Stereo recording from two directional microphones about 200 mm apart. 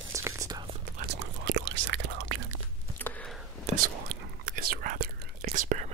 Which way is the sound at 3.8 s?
50° right (ahead or behind).